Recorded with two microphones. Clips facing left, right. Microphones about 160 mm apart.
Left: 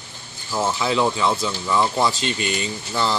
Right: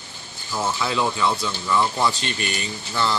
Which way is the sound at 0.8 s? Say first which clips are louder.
Left 2 dB; 25° left (ahead or behind).